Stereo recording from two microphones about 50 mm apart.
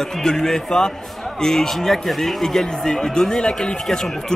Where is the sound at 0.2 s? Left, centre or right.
Centre.